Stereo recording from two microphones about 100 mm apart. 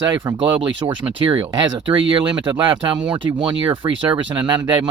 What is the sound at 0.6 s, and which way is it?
Speech, 55° right (ahead or behind).